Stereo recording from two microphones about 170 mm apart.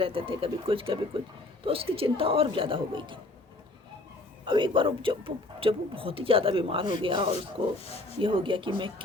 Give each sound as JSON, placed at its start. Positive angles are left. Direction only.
{"t": 0.0, "sound": "speech", "side_deg": -30}
{"t": 4.4, "sound": "speech", "side_deg": -30}